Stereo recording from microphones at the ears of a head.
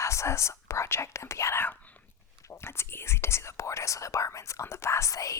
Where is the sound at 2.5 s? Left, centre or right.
Left.